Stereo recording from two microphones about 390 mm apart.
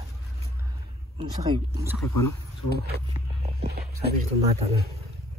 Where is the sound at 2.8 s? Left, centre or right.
Right.